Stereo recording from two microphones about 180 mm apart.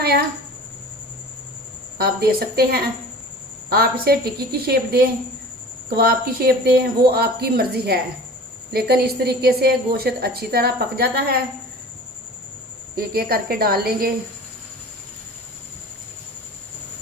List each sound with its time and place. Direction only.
0.0 s a child's voice: 60° right (ahead or behind)
2.0 s a woman's voice: 60° right (ahead or behind)
13.0 s a woman's voice: 55° right (ahead or behind)